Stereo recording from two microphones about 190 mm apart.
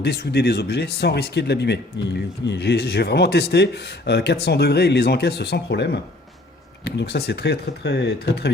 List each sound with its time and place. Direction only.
0.0 s speech: 60° left (ahead or behind)